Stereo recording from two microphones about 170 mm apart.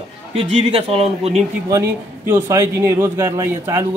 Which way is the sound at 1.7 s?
15° right (ahead or behind).